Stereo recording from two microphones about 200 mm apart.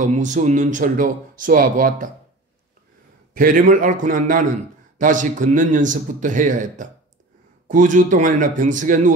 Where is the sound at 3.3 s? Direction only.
45° right (ahead or behind).